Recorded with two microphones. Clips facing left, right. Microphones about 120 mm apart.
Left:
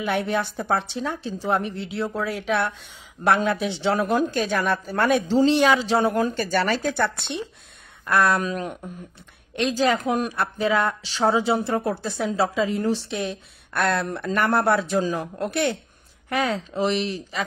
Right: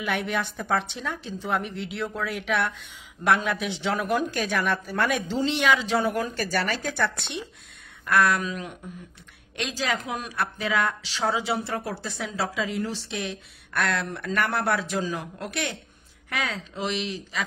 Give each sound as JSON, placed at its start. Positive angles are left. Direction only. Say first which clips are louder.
{"t": 0.0, "sound": "a woman's voice", "louder": "left 4 dB", "side_deg": 35}
{"t": 8.4, "sound": "a woman's voice", "louder": "left 5 dB", "side_deg": 40}
{"t": 10.3, "sound": "speech", "louder": "left 4 dB", "side_deg": 30}
{"t": 15.0, "sound": "a woman's voice", "louder": "left 5 dB", "side_deg": 40}
{"t": 15.4, "sound": "a woman's voice", "louder": "left 11 dB", "side_deg": 30}